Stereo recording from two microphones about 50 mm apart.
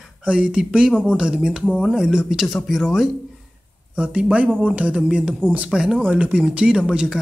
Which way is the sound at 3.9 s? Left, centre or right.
Right.